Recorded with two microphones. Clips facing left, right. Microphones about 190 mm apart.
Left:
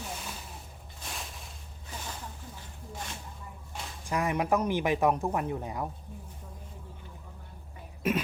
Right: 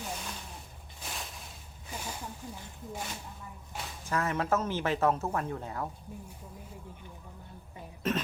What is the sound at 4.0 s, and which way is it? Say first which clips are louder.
Speech: left 2 dB; 15° left (ahead or behind).